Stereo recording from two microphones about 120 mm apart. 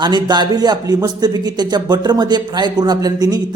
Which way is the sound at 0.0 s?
35° right (ahead or behind).